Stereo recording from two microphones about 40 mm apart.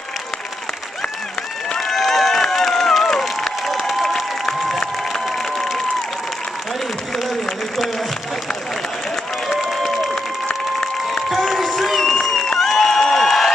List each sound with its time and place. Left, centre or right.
1.8 s crowd: centre
5.2 s applause: centre
10.1 s applause: centre
11.2 s a sound: centre
12.5 s crowd: centre